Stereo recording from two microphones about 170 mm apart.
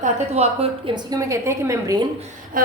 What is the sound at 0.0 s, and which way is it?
A woman's voice, 35° right (ahead or behind).